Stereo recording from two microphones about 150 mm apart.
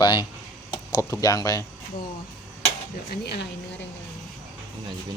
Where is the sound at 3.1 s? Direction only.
90° left.